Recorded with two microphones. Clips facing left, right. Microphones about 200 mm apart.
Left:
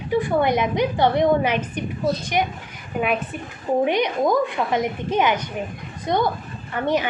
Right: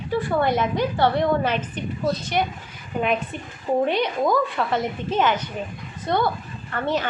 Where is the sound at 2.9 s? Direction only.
5° left (ahead or behind).